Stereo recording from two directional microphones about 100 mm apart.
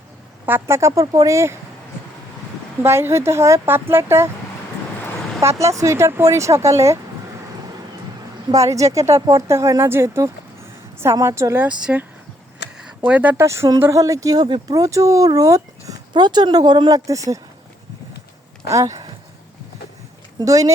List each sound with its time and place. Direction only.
0.4 s speech: 25° right (ahead or behind)
2.8 s speech: 25° right (ahead or behind)
5.4 s speech: 30° right (ahead or behind)
8.5 s speech: 35° right (ahead or behind)
11.7 s speech: 10° right (ahead or behind)
13.1 s speech: 15° right (ahead or behind)
13.4 s speech: 30° right (ahead or behind)
16.1 s speech: 45° right (ahead or behind)
16.9 s speech: 35° right (ahead or behind)
18.7 s speech: 35° right (ahead or behind)
20.4 s speech: 35° right (ahead or behind)